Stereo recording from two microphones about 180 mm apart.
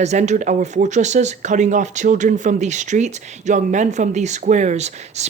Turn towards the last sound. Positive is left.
turn(degrees=-40)  # may be behind; listen again after turning